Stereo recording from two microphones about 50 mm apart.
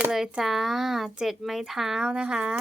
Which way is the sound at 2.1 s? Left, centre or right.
Centre.